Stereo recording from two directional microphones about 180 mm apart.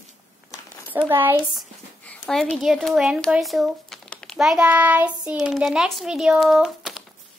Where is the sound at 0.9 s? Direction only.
10° right (ahead or behind).